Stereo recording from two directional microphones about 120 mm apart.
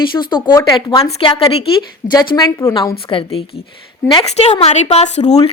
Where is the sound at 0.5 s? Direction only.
30° left (ahead or behind).